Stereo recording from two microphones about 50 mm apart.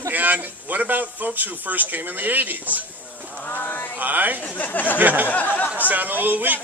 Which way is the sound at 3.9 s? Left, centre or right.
Right.